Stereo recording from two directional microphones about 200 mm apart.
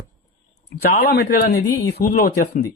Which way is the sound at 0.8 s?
50° left (ahead or behind).